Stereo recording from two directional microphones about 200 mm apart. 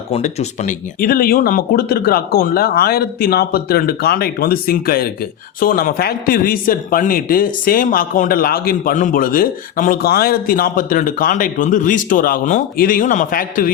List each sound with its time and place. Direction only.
0.1 s a man's voice: 35° left (ahead or behind)